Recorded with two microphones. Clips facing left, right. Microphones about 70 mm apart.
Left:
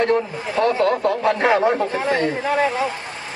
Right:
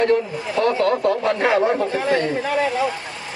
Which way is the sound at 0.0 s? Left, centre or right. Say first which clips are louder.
Right 1 dB; left.